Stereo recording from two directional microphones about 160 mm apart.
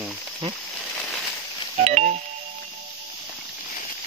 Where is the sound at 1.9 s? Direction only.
40° right (ahead or behind).